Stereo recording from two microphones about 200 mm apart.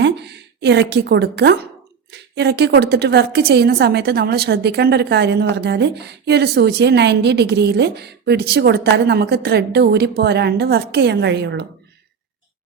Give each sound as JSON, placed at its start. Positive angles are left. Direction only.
{"t": 0.0, "sound": "a woman's voice", "side_deg": -60}